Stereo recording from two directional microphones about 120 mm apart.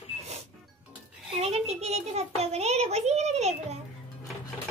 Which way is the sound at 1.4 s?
60° right (ahead or behind).